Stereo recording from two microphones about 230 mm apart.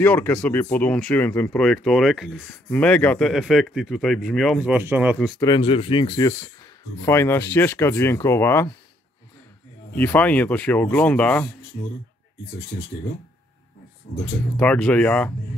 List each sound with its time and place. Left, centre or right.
0.0 s speech: centre
5.4 s speech: left
9.9 s speech: centre
14.6 s speech: centre